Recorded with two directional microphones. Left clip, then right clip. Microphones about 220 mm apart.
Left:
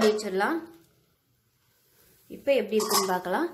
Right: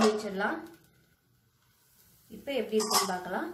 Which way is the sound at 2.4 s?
45° left (ahead or behind).